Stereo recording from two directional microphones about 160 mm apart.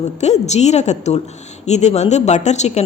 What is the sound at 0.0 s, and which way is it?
Speech, 45° left (ahead or behind).